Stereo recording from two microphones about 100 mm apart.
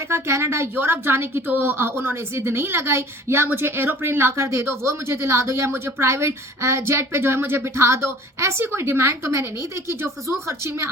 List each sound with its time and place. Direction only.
0.1 s a woman's voice: 25° right (ahead or behind)